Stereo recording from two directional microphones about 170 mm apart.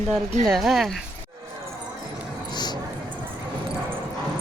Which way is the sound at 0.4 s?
Centre (ahead or behind).